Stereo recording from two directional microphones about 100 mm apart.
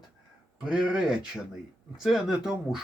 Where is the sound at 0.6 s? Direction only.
5° right (ahead or behind).